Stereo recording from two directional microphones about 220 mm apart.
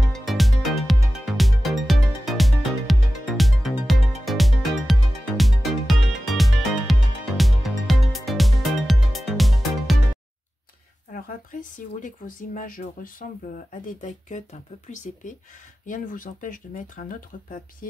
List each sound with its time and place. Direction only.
0.1 s music: centre (ahead or behind)
11.1 s speech: 40° left (ahead or behind)